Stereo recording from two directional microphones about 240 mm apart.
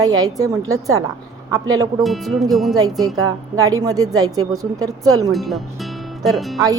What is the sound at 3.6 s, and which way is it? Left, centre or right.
A woman's voice, centre.